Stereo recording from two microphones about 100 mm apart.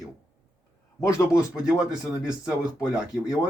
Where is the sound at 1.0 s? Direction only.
30° left (ahead or behind).